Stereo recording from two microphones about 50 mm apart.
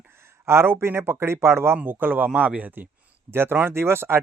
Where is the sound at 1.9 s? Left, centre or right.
Right.